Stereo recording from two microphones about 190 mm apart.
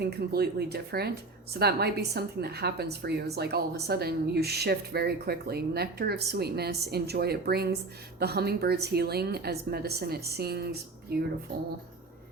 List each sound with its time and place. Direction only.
0.0 s a woman's voice: 55° right (ahead or behind)